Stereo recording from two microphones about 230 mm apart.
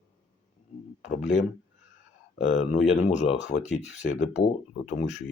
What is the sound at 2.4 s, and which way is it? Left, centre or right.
Speech, left.